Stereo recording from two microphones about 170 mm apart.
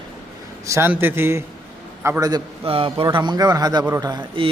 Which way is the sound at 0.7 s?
15° right (ahead or behind).